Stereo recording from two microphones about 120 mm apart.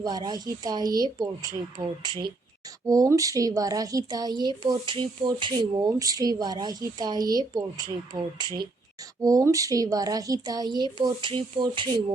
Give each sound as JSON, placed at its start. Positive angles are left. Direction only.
{"t": 0.0, "sound": "a woman's voice", "side_deg": -35}
{"t": 9.2, "sound": "a woman's voice", "side_deg": -30}